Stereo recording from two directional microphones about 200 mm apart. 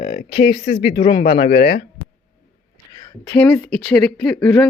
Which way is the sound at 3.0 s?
15° left (ahead or behind).